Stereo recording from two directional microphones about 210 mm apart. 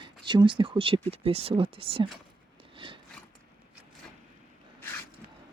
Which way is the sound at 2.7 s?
25° right (ahead or behind).